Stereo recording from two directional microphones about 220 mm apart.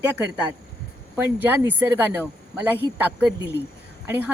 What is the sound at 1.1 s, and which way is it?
Speech, 10° right (ahead or behind).